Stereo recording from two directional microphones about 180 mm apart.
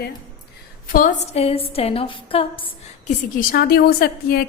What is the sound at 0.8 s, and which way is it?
A woman's voice, 50° left (ahead or behind).